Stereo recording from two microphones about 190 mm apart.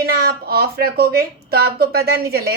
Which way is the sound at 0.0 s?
55° right (ahead or behind).